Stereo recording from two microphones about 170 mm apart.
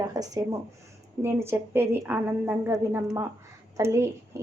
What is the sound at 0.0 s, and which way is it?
A woman's voice, 20° right (ahead or behind).